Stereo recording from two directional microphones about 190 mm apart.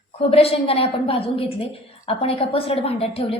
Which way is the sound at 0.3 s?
30° left (ahead or behind).